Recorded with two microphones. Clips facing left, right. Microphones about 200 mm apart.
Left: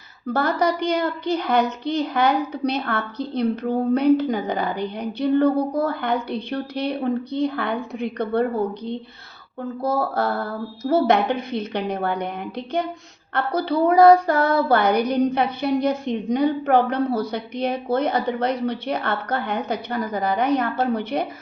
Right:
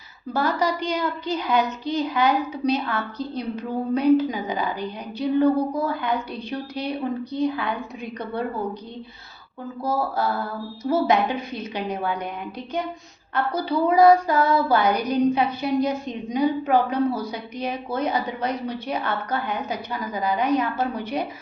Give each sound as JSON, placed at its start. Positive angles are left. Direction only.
{"t": 0.3, "sound": "a woman's voice", "side_deg": 65}
{"t": 9.8, "sound": "a sound", "side_deg": 65}
{"t": 10.8, "sound": "a woman's voice", "side_deg": 65}
{"t": 13.3, "sound": "a woman's voice", "side_deg": 65}